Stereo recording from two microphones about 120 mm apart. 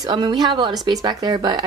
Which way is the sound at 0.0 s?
40° right (ahead or behind).